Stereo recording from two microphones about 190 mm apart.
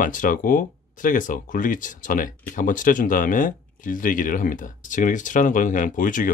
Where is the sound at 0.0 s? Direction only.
45° left (ahead or behind).